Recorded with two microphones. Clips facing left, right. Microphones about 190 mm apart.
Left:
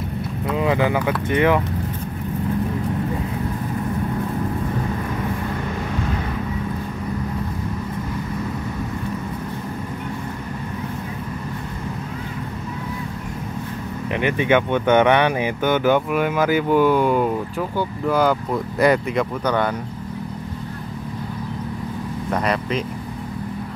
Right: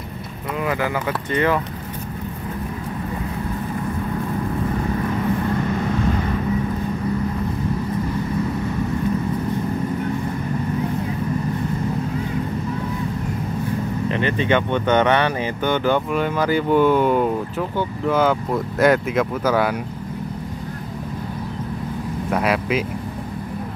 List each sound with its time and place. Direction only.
0.6 s speech: 20° left (ahead or behind)
14.0 s speech: 15° left (ahead or behind); by 19.7 s 5° right (ahead or behind)
22.3 s speech: 5° right (ahead or behind)